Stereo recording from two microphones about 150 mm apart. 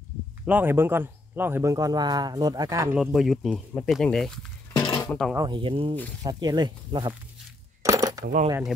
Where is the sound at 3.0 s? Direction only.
Centre (ahead or behind).